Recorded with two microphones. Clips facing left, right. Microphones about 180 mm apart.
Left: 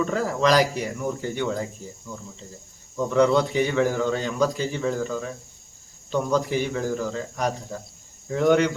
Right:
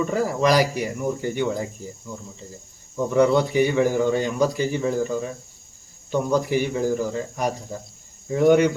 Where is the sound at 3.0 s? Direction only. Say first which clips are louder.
Right 1 dB; 15° right (ahead or behind).